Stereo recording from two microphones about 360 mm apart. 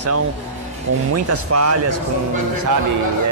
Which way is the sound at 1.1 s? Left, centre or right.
Right.